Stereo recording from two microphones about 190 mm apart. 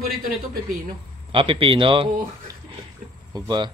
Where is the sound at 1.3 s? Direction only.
25° right (ahead or behind).